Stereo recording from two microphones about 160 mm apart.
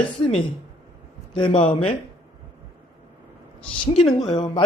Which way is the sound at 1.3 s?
30° left (ahead or behind).